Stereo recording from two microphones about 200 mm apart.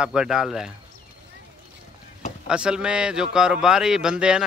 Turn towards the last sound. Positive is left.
turn(degrees=-5)  # may be behind; listen again after turning